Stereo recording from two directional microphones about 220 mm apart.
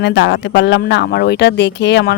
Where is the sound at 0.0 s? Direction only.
50° left (ahead or behind).